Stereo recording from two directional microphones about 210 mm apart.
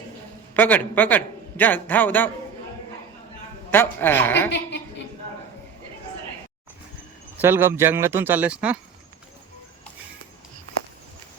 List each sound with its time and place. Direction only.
0.5 s a man's voice: 10° left (ahead or behind)
3.7 s a man's voice: 10° left (ahead or behind)
4.4 s a woman's voice: 55° left (ahead or behind)
7.4 s speech: 10° right (ahead or behind)